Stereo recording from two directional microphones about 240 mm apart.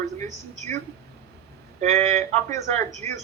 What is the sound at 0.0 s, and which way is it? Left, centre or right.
Speech, right.